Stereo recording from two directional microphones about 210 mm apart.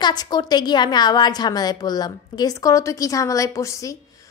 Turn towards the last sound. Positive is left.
turn(degrees=15)  # may be behind; listen again after turning